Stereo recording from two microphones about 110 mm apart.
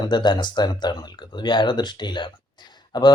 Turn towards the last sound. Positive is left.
turn(degrees=40)  # may be behind; listen again after turning